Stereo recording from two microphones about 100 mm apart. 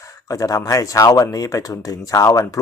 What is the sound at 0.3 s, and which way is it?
Speech, 35° left (ahead or behind).